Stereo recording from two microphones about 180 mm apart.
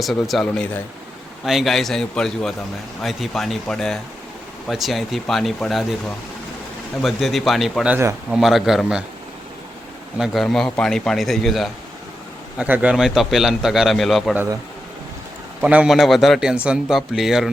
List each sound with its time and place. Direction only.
0.0 s a man's voice: centre (ahead or behind)
7.0 s a man's voice: centre (ahead or behind)
10.2 s a man's voice: centre (ahead or behind)
15.6 s a man's voice: 5° right (ahead or behind)